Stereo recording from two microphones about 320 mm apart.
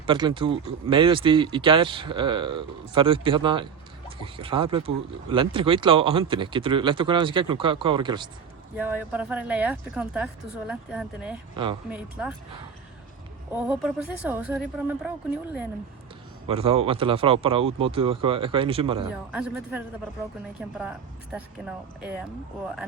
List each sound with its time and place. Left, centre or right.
0.0 s a woman's voice: centre
11.5 s speech: centre
11.9 s a woman's voice: centre
13.5 s a woman's voice: centre
16.5 s speech: centre
19.3 s a woman's voice: centre
22.0 s a woman's voice: centre